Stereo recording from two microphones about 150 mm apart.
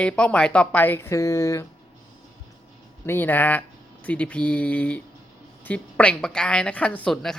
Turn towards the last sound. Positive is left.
turn(degrees=5)  # may be behind; listen again after turning